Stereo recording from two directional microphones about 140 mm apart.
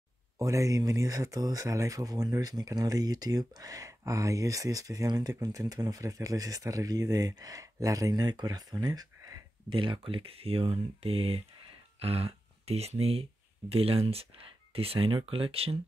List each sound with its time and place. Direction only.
0.4 s speech: 25° right (ahead or behind); by 15.8 s 45° right (ahead or behind)